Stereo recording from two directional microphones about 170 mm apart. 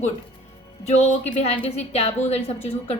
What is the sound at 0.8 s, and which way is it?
A woman's voice, 40° left (ahead or behind).